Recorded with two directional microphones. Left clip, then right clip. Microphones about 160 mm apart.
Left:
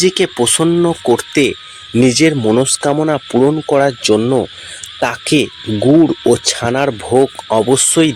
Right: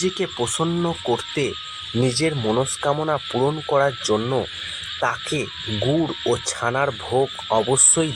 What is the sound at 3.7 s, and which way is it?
Speech, 45° left (ahead or behind).